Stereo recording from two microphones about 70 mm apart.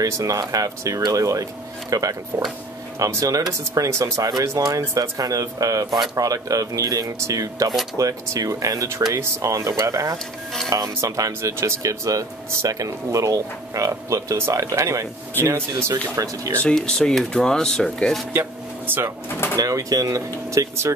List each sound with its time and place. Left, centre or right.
0.0 s speech: right
16.6 s speech: centre
18.3 s a sound: right
19.6 s speech: right